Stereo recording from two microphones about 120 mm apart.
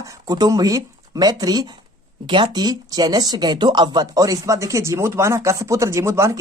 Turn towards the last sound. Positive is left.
turn(degrees=-25)  # may be behind; listen again after turning